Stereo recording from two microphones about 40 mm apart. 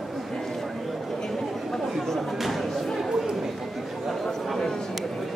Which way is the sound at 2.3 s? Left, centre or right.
Centre.